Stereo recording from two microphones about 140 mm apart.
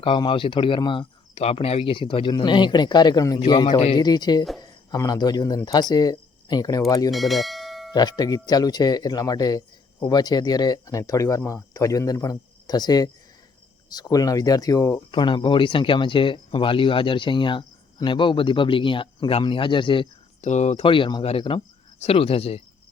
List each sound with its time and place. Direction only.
0.0 s speech: 40° left (ahead or behind)
1.4 s speech: 45° left (ahead or behind); by 6.8 s 30° left (ahead or behind)
7.1 s bell: centre (ahead or behind)
7.9 s speech: 30° left (ahead or behind)
15.1 s speech: 35° left (ahead or behind)
20.4 s speech: 55° left (ahead or behind)
20.8 s speech: 35° left (ahead or behind)